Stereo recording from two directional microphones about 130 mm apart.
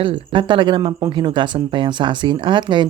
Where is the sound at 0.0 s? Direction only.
40° right (ahead or behind).